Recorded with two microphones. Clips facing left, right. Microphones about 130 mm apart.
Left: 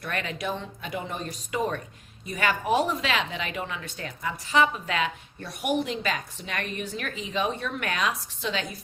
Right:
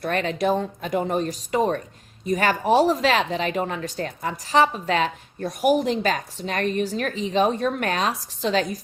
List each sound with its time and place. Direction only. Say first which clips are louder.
0.0 s speech: right 8 dB; 35° right (ahead or behind)